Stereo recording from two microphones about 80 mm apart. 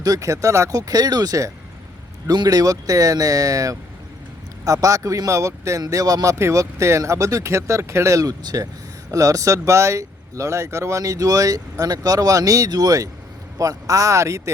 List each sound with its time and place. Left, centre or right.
0.0 s speech: right
8.3 s speech: right
9.1 s speech: right